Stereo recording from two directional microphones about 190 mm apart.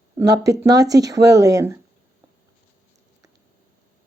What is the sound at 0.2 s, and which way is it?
Speech, 20° right (ahead or behind).